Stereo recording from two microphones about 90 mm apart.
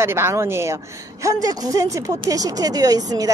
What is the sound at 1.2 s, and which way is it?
Speech, 40° right (ahead or behind).